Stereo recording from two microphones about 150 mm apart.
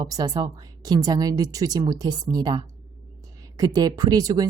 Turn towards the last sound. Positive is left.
turn(degrees=-25)  # may be behind; listen again after turning